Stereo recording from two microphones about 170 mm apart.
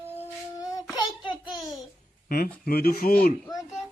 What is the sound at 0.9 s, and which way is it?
Child singing, 30° left (ahead or behind).